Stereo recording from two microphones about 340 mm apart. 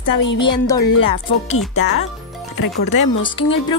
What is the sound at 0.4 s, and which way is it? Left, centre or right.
Speech, centre.